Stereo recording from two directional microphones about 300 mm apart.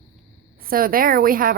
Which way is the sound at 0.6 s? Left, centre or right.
Right.